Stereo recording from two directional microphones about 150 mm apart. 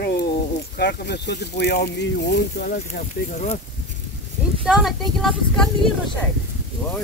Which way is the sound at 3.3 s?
50° left (ahead or behind).